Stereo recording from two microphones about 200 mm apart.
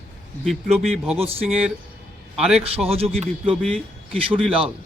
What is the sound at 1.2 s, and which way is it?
Speech, 30° right (ahead or behind).